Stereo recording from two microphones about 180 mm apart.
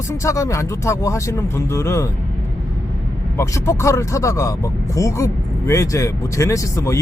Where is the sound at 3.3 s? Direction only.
15° left (ahead or behind).